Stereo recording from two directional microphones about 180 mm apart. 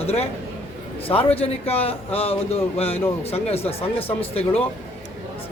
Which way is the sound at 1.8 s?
35° left (ahead or behind).